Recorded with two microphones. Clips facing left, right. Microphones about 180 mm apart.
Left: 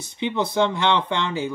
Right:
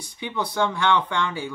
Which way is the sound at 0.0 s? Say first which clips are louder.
Left 5 dB; 25° left (ahead or behind).